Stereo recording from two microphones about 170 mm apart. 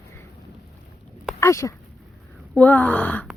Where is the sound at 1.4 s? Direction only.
15° left (ahead or behind).